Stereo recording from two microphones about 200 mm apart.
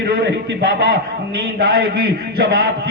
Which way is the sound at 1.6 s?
50° right (ahead or behind).